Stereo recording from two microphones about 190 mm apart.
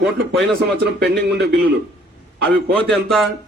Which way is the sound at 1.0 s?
60° right (ahead or behind).